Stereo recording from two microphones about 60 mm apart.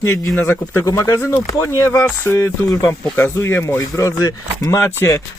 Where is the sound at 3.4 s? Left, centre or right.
Left.